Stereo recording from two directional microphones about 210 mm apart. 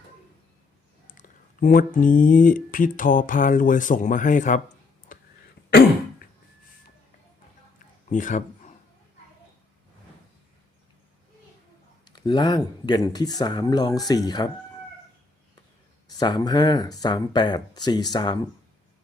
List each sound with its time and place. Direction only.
1.0 s speech: 40° left (ahead or behind)
5.1 s a sound: 40° left (ahead or behind)
8.1 s speech: 35° left (ahead or behind)
12.0 s speech: 20° left (ahead or behind)
16.0 s speech: 20° left (ahead or behind)